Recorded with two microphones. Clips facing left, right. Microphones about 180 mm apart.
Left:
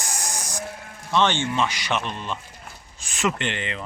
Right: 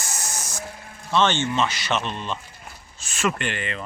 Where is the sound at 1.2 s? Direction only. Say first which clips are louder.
Right 1 dB; 15° left (ahead or behind).